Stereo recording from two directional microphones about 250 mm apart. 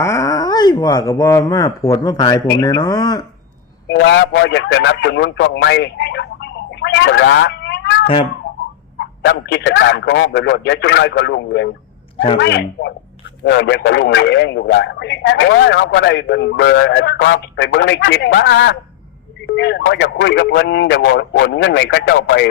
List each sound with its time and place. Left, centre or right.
0.0 s speech: centre
3.8 s a man's voice: left
8.0 s speech: left
9.0 s speech: left
12.1 s speech: left
12.4 s a man's voice: left